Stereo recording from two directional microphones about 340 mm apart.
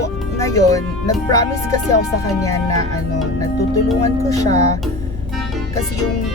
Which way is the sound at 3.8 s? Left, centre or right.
Centre.